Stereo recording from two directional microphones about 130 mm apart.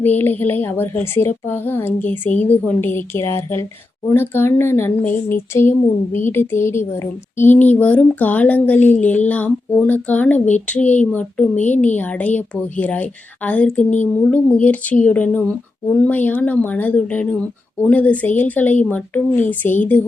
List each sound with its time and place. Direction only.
0.0 s a woman's voice: 15° left (ahead or behind)